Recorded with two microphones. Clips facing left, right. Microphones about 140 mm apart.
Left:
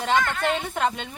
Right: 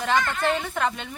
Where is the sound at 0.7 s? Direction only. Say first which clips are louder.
Left 1 dB; 20° left (ahead or behind).